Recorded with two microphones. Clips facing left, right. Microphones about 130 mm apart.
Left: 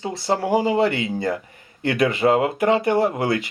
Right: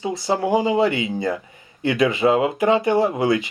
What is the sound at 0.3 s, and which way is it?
Speech, 20° right (ahead or behind).